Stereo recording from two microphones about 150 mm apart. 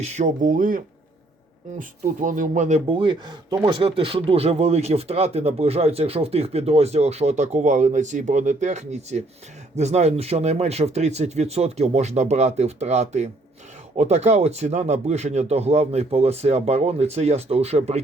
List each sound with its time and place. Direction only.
0.0 s speech: 50° right (ahead or behind); by 0.8 s 65° right (ahead or behind)
1.8 s speech: 60° right (ahead or behind)
2.8 s speech: 35° right (ahead or behind)